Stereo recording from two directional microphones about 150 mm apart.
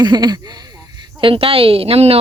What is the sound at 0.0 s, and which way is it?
Speech, 30° right (ahead or behind).